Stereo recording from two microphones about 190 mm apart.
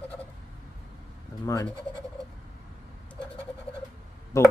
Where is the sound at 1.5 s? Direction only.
20° left (ahead or behind).